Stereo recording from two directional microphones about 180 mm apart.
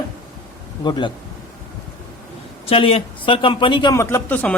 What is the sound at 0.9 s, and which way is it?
Speech, 25° left (ahead or behind).